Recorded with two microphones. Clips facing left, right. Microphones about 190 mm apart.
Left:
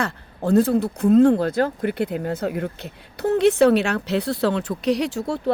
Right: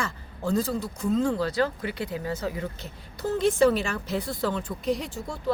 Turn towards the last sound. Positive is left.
turn(degrees=70)  # may be behind; listen again after turning